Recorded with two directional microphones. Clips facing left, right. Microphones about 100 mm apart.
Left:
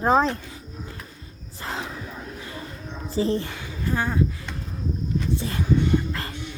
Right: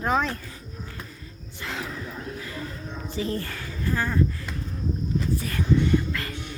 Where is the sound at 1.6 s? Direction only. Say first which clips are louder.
Left 1 dB; 30° left (ahead or behind).